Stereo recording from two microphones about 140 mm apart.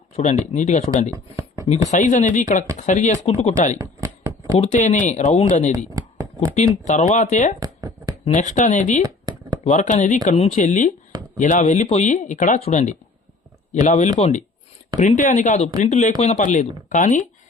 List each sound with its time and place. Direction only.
0.2 s speech: 55° left (ahead or behind)
1.1 s speech: 25° right (ahead or behind)
1.9 s speech: 65° left (ahead or behind)
3.8 s a sound: 20° right (ahead or behind)
4.5 s speech: 55° left (ahead or behind)
5.9 s a sound: 20° right (ahead or behind)
6.8 s speech: 60° left (ahead or behind)
7.6 s a sound: 25° right (ahead or behind)
8.3 s speech: 60° left (ahead or behind)
10.3 s speech: 45° left (ahead or behind)
10.6 s speech: 65° left (ahead or behind)